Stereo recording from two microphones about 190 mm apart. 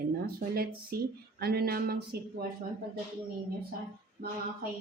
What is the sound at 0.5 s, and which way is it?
A woman's voice, 55° right (ahead or behind).